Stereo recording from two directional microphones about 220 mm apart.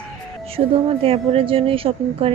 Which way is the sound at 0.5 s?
25° right (ahead or behind).